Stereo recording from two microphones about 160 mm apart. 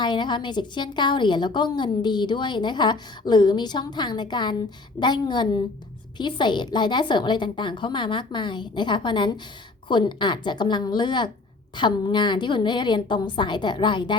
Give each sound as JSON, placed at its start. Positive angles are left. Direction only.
{"t": 0.0, "sound": "a woman's voice", "side_deg": 30}